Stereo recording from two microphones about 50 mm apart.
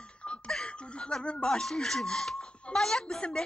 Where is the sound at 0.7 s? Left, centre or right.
Left.